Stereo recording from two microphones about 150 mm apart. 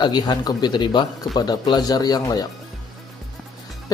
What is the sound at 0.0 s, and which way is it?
Speech, 30° left (ahead or behind).